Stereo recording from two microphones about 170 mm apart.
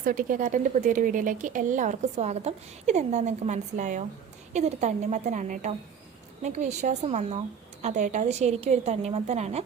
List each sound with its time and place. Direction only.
0.0 s a woman's voice: 50° right (ahead or behind)